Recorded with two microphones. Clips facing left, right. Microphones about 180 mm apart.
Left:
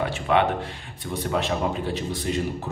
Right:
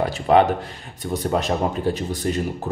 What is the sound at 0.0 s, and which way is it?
A man's voice, 40° right (ahead or behind).